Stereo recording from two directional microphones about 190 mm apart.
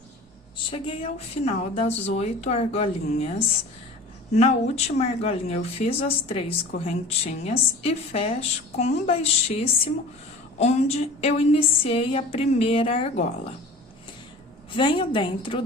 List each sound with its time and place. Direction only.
0.5 s speech: 30° left (ahead or behind)
14.8 s a woman's voice: 25° left (ahead or behind)